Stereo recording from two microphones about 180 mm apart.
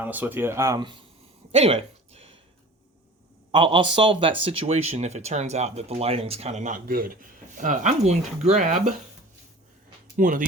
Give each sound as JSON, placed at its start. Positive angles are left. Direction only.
{"t": 0.0, "sound": "speech", "side_deg": -10}
{"t": 1.5, "sound": "a sound", "side_deg": -35}
{"t": 3.5, "sound": "speech", "side_deg": -25}
{"t": 10.2, "sound": "speech", "side_deg": -50}